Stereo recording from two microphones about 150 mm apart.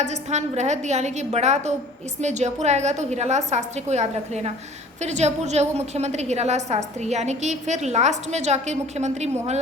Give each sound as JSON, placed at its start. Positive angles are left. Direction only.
{"t": 0.0, "sound": "a woman's voice", "side_deg": -50}